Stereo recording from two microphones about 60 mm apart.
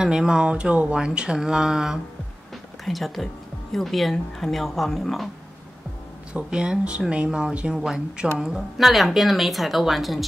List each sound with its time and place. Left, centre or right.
0.0 s speech: centre
6.3 s speech: centre
7.2 s speech: centre